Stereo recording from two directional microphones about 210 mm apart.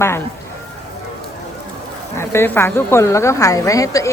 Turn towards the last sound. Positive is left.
turn(degrees=15)  # may be behind; listen again after turning